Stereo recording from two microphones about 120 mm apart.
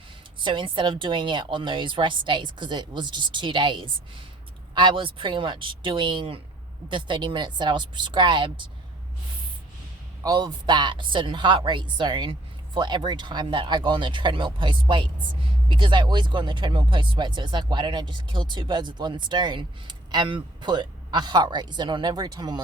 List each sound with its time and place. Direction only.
0.3 s speech: 45° right (ahead or behind)
10.2 s speech: 40° right (ahead or behind)